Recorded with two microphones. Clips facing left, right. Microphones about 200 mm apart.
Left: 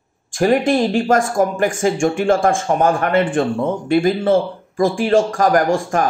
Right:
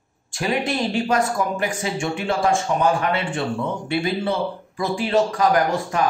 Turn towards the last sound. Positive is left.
turn(degrees=50)  # may be behind; listen again after turning